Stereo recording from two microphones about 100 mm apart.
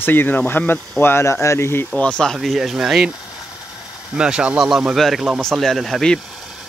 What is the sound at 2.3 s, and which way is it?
Speech, centre (ahead or behind).